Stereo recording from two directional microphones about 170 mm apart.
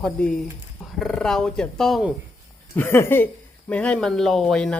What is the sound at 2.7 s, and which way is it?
Speech, 15° left (ahead or behind).